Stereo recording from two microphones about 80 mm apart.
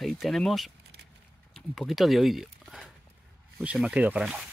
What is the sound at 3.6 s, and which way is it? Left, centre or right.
Speech, centre.